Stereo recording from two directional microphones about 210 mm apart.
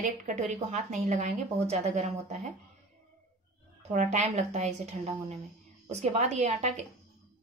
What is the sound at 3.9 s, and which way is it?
A woman's voice, 35° right (ahead or behind).